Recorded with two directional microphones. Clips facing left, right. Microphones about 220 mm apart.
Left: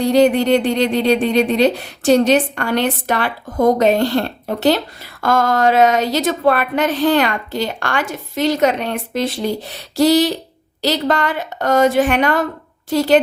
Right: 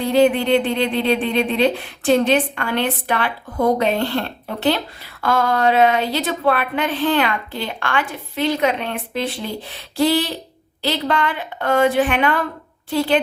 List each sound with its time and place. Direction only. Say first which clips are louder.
0.0 s a woman's voice: left 3 dB; 40° left (ahead or behind)